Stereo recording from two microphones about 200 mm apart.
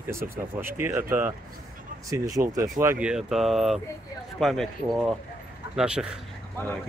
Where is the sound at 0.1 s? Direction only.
10° right (ahead or behind).